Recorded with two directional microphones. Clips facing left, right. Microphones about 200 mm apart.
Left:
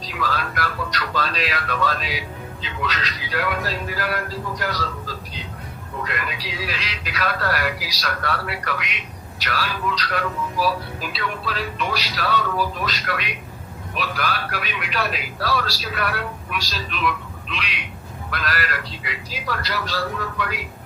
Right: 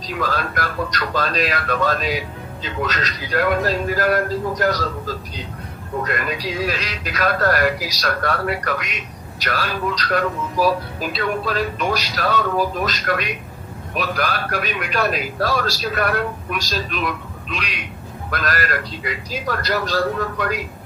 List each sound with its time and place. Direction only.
0.1 s speech: 45° right (ahead or behind)